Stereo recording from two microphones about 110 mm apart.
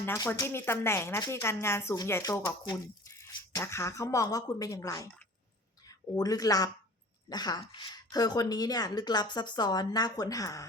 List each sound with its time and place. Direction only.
0.3 s speech: 25° left (ahead or behind)
6.1 s a woman's voice: 35° left (ahead or behind)